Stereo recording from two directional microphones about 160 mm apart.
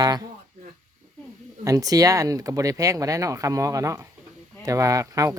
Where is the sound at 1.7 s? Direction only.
20° right (ahead or behind).